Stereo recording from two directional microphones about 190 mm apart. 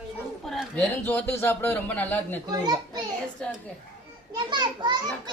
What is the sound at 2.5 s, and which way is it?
Speech, 20° right (ahead or behind).